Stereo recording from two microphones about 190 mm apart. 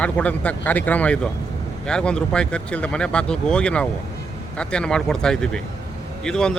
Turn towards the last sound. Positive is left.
turn(degrees=5)  # may be behind; listen again after turning